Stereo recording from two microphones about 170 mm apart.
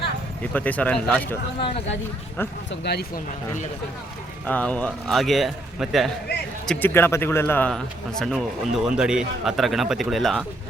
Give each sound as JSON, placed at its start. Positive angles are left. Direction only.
{"t": 0.5, "sound": "speech", "side_deg": 10}
{"t": 1.5, "sound": "speech", "side_deg": 30}
{"t": 2.6, "sound": "speech", "side_deg": 75}
{"t": 4.4, "sound": "speech", "side_deg": 10}
{"t": 6.7, "sound": "speech", "side_deg": 10}
{"t": 8.2, "sound": "speech", "side_deg": 0}